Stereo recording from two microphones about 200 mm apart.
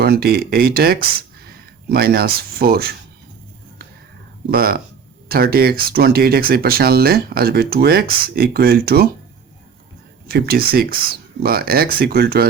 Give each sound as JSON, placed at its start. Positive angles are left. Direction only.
{"t": 0.0, "sound": "speech", "side_deg": -50}
{"t": 4.5, "sound": "speech", "side_deg": -50}
{"t": 10.2, "sound": "speech", "side_deg": -50}